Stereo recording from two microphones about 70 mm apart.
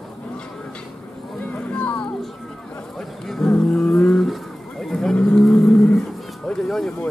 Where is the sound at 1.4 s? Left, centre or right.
Centre.